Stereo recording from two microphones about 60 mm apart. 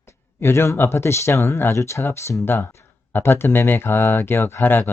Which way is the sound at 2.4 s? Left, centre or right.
Left.